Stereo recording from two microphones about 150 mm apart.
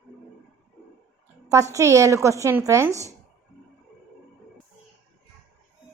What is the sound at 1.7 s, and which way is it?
Speech, 20° right (ahead or behind).